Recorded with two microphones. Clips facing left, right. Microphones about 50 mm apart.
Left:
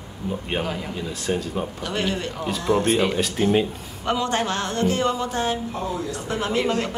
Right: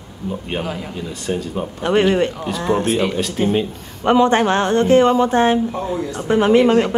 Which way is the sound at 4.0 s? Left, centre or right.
Right.